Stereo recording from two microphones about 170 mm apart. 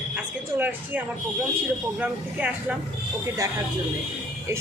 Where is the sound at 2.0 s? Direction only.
10° right (ahead or behind).